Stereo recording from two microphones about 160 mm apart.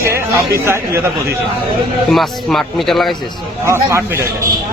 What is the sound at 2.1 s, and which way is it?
A man's voice, centre (ahead or behind).